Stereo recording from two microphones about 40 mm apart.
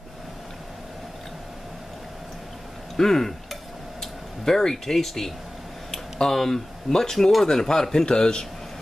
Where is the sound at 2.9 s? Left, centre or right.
Centre.